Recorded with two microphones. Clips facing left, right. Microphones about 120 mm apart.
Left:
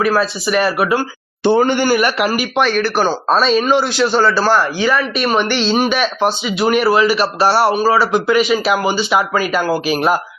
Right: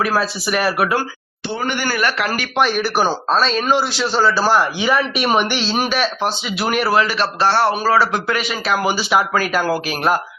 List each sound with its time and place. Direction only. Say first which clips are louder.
0.0 s a man's voice: left 3 dB; 5° right (ahead or behind)
1.6 s a man's voice: left 7 dB; 25° left (ahead or behind)
2.0 s a man's voice: left 4 dB; 15° left (ahead or behind)
2.6 s speech: left 1 dB; 5° right (ahead or behind)
3.2 s a man's voice: left 4 dB; 5° left (ahead or behind)